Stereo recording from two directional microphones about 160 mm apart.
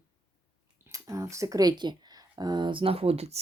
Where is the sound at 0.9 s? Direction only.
20° right (ahead or behind); by 3.4 s 40° right (ahead or behind).